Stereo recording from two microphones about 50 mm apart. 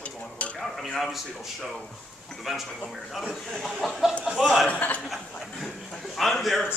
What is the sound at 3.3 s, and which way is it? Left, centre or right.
A man's voice, centre.